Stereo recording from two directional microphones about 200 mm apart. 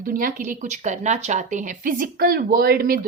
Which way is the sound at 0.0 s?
45° right (ahead or behind).